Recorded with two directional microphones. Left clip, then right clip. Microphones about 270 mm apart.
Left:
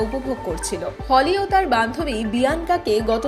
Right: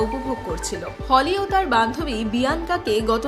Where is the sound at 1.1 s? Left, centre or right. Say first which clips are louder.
Left 1 dB; centre.